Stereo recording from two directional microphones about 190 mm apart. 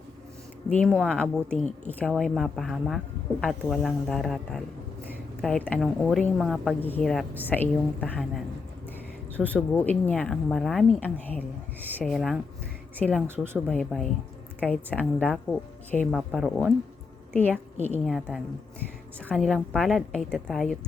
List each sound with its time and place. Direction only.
0.7 s a woman's voice: 5° left (ahead or behind)
9.3 s a woman's voice: 10° left (ahead or behind)
13.2 s speech: 10° right (ahead or behind)
13.7 s a woman's voice: 5° left (ahead or behind)
18.1 s speech: centre (ahead or behind)